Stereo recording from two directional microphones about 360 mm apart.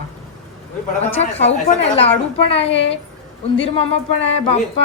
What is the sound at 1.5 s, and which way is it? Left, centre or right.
A woman's voice, centre.